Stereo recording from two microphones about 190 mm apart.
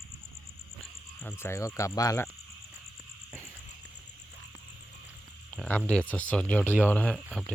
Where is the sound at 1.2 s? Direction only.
10° left (ahead or behind).